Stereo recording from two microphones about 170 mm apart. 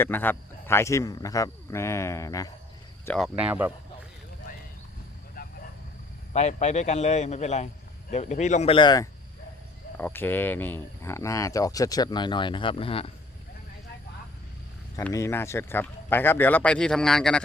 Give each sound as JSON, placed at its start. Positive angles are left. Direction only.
{"t": 0.0, "sound": "speech", "side_deg": 10}
{"t": 3.2, "sound": "speech", "side_deg": -5}
{"t": 5.4, "sound": "vehicle", "side_deg": 60}
{"t": 6.3, "sound": "a man's voice", "side_deg": 40}
{"t": 8.7, "sound": "speech", "side_deg": 25}
{"t": 10.0, "sound": "speech", "side_deg": 10}
{"t": 15.1, "sound": "speech", "side_deg": 15}